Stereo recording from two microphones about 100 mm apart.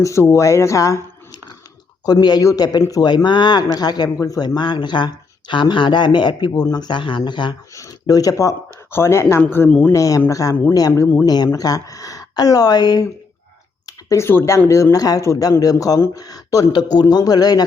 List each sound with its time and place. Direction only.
0.0 s speech: 30° left (ahead or behind); by 7.5 s 50° left (ahead or behind)
7.8 s speech: 35° left (ahead or behind)
9.6 s speech: 10° left (ahead or behind)
9.9 s speech: 30° left (ahead or behind)
13.8 s speech: 30° left (ahead or behind)